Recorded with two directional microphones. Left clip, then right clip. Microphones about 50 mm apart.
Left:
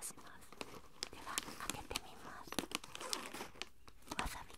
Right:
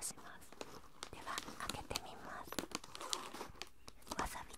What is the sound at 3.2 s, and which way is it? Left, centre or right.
Crumpling, left.